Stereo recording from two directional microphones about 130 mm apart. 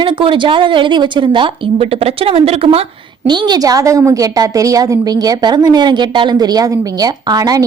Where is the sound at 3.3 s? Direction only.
35° right (ahead or behind).